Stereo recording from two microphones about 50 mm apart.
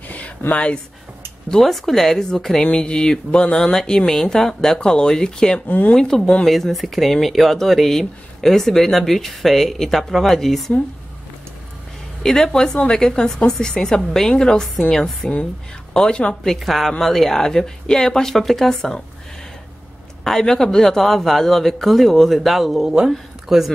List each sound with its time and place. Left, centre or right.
0.5 s speech: left
1.6 s a woman's voice: centre
5.7 s speech: left
5.9 s a woman's voice: centre
12.2 s a woman's voice: centre
16.5 s a woman's voice: centre
20.2 s speech: centre